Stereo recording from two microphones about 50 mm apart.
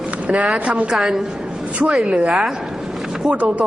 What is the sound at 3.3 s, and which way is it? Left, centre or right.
Chopping, right.